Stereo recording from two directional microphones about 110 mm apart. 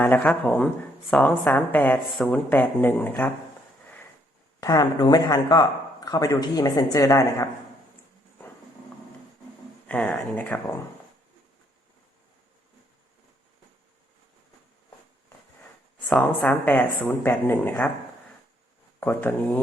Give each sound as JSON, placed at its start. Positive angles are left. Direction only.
{"t": 0.1, "sound": "speech", "side_deg": 15}
{"t": 2.1, "sound": "speech", "side_deg": 5}
{"t": 2.5, "sound": "speech", "side_deg": 15}
{"t": 4.6, "sound": "speech", "side_deg": 30}
{"t": 4.9, "sound": "speech", "side_deg": 40}
{"t": 9.8, "sound": "speech", "side_deg": 10}
{"t": 16.0, "sound": "speech", "side_deg": 5}
{"t": 18.9, "sound": "speech", "side_deg": 15}